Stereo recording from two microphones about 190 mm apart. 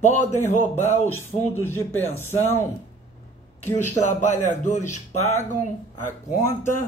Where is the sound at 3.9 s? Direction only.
40° left (ahead or behind).